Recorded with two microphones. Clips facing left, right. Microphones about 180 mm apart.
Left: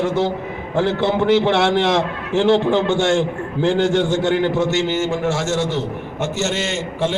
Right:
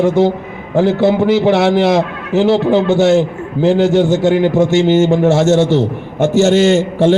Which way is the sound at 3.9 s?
10° right (ahead or behind).